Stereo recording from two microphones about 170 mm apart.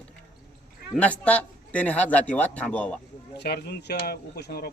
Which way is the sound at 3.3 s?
70° left (ahead or behind).